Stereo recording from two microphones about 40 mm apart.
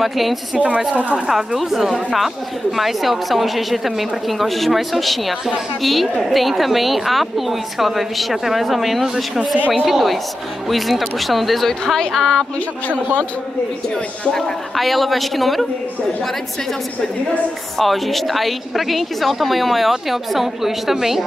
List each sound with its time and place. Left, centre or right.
0.0 s a woman's voice: centre
0.6 s a woman's voice: right
1.3 s a woman's voice: centre
9.0 s a woman's voice: centre
11.8 s speech: centre
14.3 s a woman's voice: centre
17.7 s a woman's voice: centre